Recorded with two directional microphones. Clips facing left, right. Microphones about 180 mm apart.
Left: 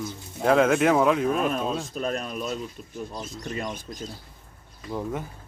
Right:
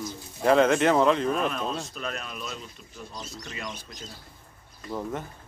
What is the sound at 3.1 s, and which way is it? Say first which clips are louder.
Speech: left 5 dB; 55° left (ahead or behind).